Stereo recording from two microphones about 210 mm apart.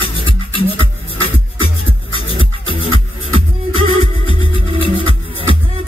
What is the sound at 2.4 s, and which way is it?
Music, 25° right (ahead or behind).